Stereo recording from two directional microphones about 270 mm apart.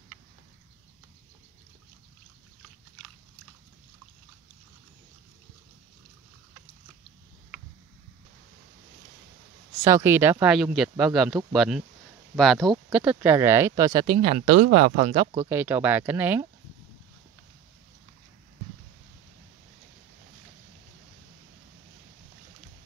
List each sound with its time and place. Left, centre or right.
9.8 s speech: centre
15.3 s speech: centre